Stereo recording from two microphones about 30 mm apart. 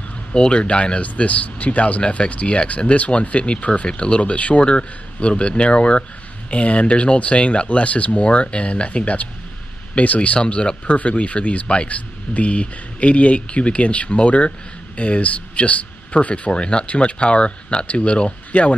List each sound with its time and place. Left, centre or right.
0.3 s speech: left
4.2 s speech: left
9.0 s speech: left
10.4 s speech: left
18.5 s speech: left